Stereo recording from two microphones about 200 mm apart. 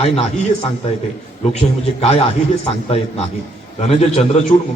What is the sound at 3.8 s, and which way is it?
Speech, 35° left (ahead or behind).